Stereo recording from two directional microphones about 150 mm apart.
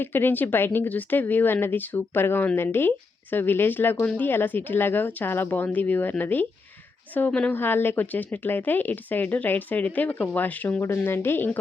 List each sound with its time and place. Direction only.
0.0 s speech: 15° left (ahead or behind)